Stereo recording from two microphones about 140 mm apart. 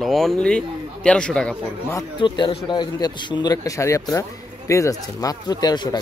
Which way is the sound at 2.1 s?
35° left (ahead or behind).